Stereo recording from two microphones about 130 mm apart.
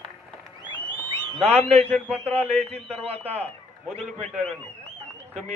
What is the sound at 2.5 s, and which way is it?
A man's voice, 50° right (ahead or behind).